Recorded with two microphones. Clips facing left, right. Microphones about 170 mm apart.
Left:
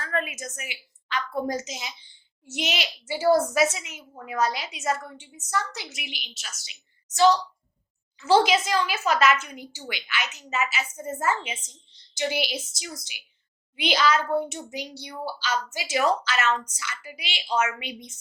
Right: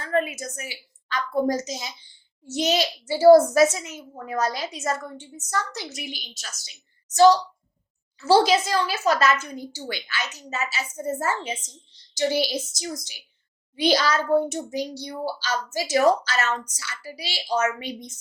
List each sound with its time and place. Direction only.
0.0 s a woman's voice: 30° right (ahead or behind)
13.7 s a child's voice: 40° right (ahead or behind)